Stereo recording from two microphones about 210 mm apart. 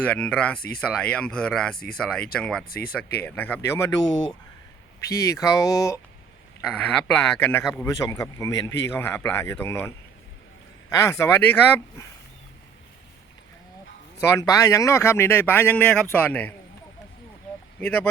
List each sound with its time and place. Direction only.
0.0 s speech: 5° left (ahead or behind)
2.6 s speech: 45° left (ahead or behind)
3.2 s speech: 10° left (ahead or behind)
5.0 s speech: 15° left (ahead or behind)
6.6 s speech: 5° left (ahead or behind)
14.2 s speech: 10° left (ahead or behind)
17.7 s speech: 5° left (ahead or behind)